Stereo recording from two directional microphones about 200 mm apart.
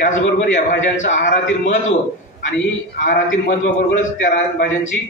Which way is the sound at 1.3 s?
65° left (ahead or behind).